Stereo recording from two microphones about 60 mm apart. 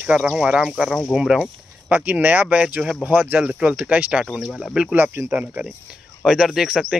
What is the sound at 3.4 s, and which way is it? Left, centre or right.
Speech, centre.